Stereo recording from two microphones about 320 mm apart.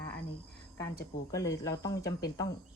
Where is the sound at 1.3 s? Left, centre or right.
Centre.